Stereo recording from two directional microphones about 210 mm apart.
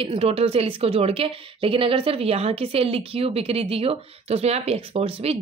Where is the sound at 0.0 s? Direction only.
25° right (ahead or behind).